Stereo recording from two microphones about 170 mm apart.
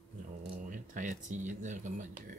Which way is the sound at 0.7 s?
50° right (ahead or behind).